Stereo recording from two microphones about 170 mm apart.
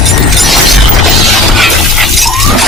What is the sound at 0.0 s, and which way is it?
Shatter, centre (ahead or behind).